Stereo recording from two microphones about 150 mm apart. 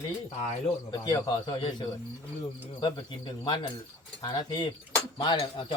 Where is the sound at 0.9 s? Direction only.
30° left (ahead or behind).